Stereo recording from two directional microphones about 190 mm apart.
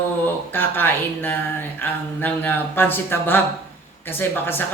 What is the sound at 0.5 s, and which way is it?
A man's voice, 10° left (ahead or behind).